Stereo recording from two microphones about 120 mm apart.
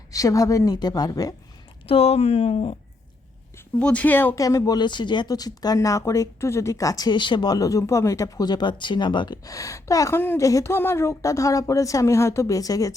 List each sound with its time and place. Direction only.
0.1 s speech: 30° left (ahead or behind)
1.9 s speech: 55° left (ahead or behind)
3.8 s speech: 10° left (ahead or behind)
4.4 s speech: 30° left (ahead or behind)